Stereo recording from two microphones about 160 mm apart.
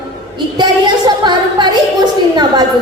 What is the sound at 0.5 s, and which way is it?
A woman's voice, 30° right (ahead or behind).